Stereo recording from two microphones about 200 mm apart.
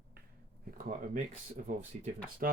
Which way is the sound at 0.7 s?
40° right (ahead or behind).